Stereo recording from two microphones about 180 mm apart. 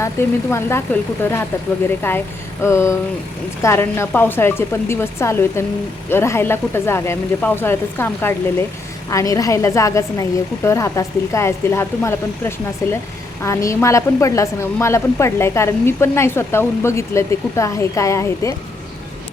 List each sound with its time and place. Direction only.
0.0 s a woman's voice: 15° left (ahead or behind)